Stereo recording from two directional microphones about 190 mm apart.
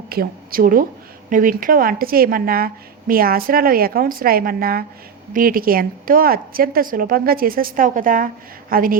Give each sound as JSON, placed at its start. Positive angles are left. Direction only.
{"t": 0.1, "sound": "a woman's voice", "side_deg": -50}